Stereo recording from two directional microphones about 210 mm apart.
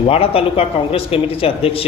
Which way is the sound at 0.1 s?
25° left (ahead or behind).